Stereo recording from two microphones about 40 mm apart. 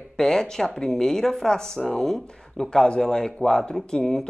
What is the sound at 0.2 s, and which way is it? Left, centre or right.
Speech, centre.